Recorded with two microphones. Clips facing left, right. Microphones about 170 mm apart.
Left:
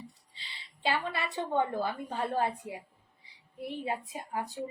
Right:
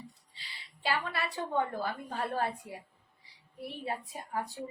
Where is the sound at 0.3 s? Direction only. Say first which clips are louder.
Left 1 dB; 25° left (ahead or behind).